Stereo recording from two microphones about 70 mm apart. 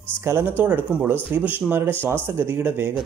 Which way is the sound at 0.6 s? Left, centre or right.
Right.